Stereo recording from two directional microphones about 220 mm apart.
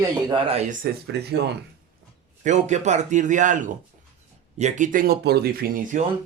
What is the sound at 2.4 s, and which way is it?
Speech, 30° right (ahead or behind).